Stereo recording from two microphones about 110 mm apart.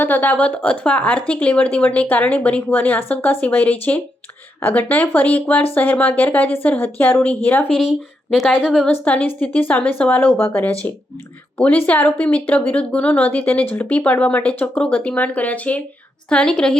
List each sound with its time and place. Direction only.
0.0 s speech: 15° left (ahead or behind)
8.6 s a woman's voice: centre (ahead or behind)
8.9 s speech: 15° left (ahead or behind)